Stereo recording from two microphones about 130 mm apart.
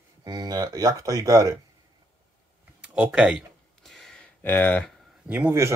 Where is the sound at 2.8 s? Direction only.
10° right (ahead or behind).